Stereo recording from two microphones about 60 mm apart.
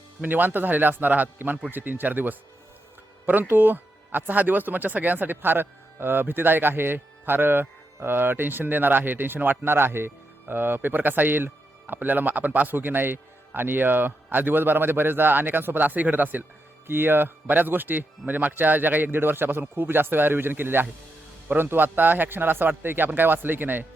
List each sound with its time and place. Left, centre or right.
0.2 s speech: right